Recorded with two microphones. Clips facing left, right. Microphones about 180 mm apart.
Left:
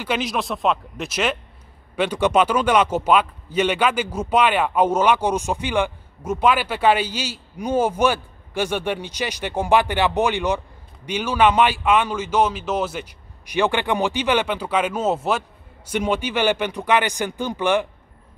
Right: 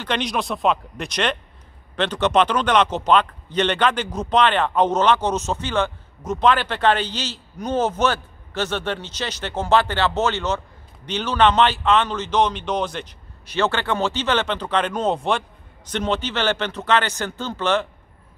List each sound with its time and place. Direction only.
0.0 s speech: 5° left (ahead or behind)